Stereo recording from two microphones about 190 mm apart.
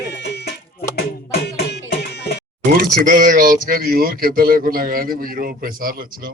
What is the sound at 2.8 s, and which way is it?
Speech, 50° right (ahead or behind).